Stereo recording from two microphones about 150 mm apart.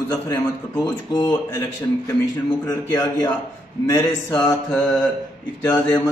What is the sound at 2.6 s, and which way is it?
A man's voice, 20° left (ahead or behind).